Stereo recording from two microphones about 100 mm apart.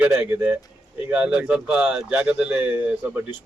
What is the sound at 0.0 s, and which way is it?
Speech, 20° right (ahead or behind).